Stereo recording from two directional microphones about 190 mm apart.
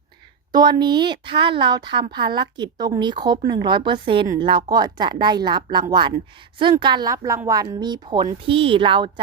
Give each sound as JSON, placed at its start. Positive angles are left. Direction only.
{"t": 0.5, "sound": "a woman's voice", "side_deg": -20}